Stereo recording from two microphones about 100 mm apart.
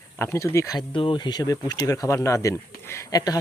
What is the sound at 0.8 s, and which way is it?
Speech, 55° left (ahead or behind).